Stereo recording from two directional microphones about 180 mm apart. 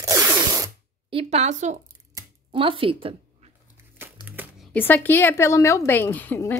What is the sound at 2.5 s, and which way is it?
Speech, 30° right (ahead or behind).